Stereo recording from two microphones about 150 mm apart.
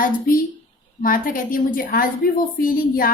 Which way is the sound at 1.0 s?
70° left (ahead or behind).